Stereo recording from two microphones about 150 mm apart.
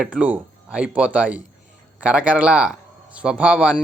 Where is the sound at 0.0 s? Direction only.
10° right (ahead or behind).